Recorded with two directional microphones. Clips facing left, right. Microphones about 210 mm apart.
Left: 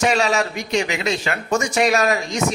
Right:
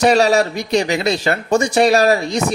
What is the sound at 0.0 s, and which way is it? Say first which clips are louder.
Speech: right 6 dB; 35° right (ahead or behind).